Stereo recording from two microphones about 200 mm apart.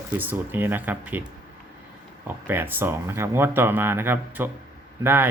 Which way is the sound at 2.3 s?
10° right (ahead or behind).